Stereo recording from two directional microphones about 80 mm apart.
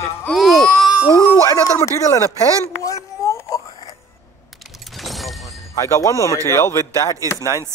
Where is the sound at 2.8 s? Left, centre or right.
Left.